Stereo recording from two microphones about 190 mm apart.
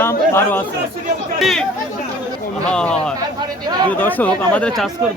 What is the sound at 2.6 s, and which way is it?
Speech, 5° left (ahead or behind).